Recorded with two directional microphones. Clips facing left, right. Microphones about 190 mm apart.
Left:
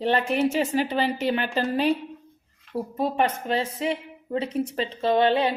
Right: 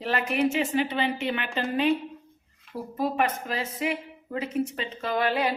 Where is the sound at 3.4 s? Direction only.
30° left (ahead or behind).